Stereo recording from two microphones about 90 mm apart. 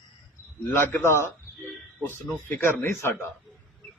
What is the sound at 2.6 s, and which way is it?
Speech, 25° left (ahead or behind).